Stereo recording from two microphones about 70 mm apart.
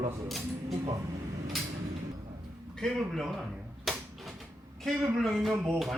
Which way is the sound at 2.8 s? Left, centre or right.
Centre.